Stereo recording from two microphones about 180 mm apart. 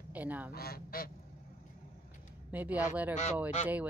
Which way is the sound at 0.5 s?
60° left (ahead or behind).